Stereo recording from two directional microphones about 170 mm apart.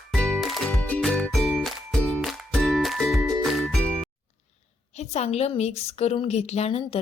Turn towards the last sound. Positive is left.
turn(degrees=35)  # may be behind; listen again after turning